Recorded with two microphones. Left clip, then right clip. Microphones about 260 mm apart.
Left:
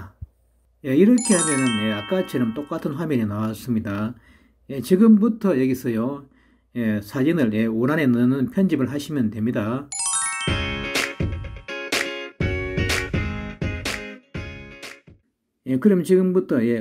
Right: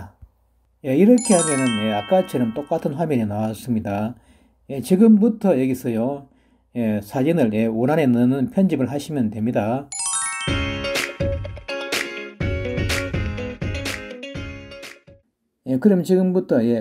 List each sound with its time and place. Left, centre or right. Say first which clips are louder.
0.9 s speech: right 2 dB; centre
6.7 s a sound: right 2 dB; centre
15.6 s speech: right 1 dB; centre